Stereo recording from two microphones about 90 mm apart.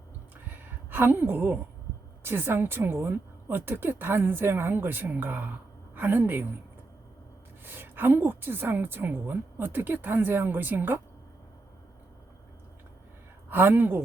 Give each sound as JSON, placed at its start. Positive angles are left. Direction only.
{"t": 0.9, "sound": "a woman's voice", "side_deg": -25}
{"t": 7.6, "sound": "a woman's voice", "side_deg": -25}
{"t": 13.5, "sound": "a woman's voice", "side_deg": -25}